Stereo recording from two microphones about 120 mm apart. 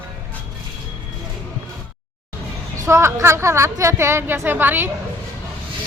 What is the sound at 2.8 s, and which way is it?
A woman's voice, 20° right (ahead or behind).